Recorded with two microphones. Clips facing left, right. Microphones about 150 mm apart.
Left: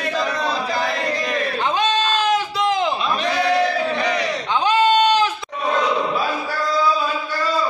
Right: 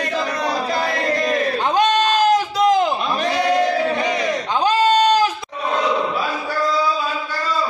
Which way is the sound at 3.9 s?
20° right (ahead or behind).